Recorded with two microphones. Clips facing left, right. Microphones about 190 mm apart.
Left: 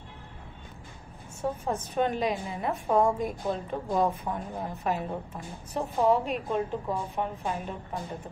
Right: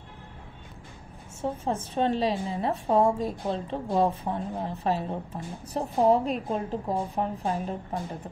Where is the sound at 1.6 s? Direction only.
30° right (ahead or behind).